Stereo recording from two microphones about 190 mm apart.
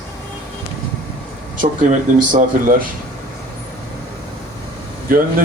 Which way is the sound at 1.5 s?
40° right (ahead or behind).